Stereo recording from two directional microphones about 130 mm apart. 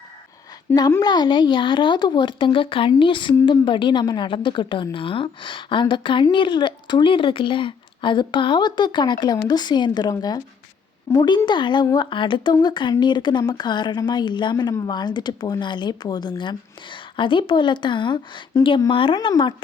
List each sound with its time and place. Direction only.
0.7 s speech: 15° left (ahead or behind)
1.0 s a woman's voice: 35° left (ahead or behind)